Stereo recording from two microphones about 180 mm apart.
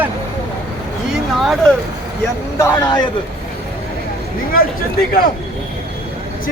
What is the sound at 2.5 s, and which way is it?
Speech, 15° left (ahead or behind).